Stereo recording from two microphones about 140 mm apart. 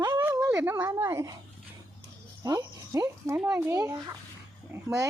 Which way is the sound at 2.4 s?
25° right (ahead or behind).